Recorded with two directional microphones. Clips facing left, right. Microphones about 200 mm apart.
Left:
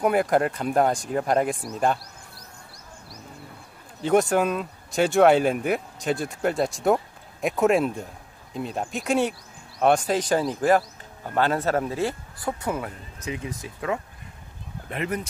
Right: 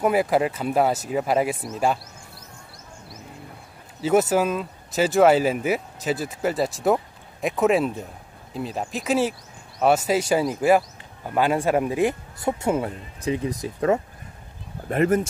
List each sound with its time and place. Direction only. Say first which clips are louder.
0.0 s speech: right 1 dB; 5° right (ahead or behind)
4.0 s speech: right 1 dB; 5° right (ahead or behind); by 15.2 s 45° right (ahead or behind)